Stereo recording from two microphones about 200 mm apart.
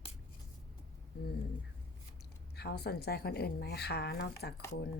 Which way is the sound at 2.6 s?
55° left (ahead or behind).